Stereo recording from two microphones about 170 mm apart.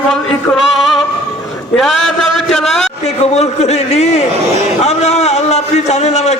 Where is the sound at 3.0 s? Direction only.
40° left (ahead or behind).